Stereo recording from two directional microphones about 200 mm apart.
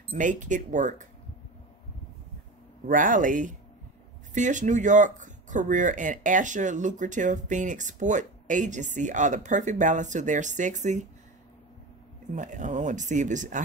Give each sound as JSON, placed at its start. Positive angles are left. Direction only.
{"t": 0.1, "sound": "speech", "side_deg": -40}
{"t": 2.9, "sound": "speech", "side_deg": -40}
{"t": 12.4, "sound": "speech", "side_deg": -40}